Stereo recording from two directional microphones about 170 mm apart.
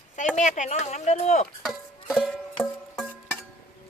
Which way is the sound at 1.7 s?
Centre (ahead or behind).